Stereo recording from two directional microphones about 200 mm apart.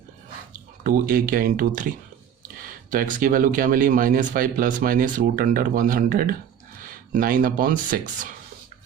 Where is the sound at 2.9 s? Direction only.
45° right (ahead or behind).